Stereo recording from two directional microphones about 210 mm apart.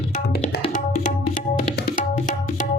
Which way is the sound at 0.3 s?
45° left (ahead or behind).